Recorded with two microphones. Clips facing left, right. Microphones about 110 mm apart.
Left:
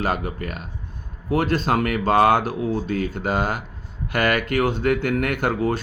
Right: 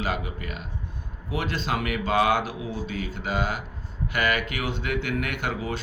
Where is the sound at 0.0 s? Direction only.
50° left (ahead or behind).